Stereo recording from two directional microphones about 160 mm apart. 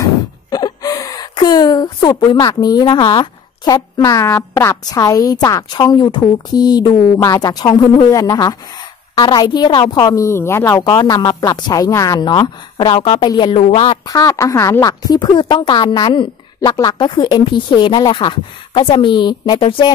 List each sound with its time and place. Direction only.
0.0 s speech: 25° left (ahead or behind)
14.0 s speech: 20° left (ahead or behind)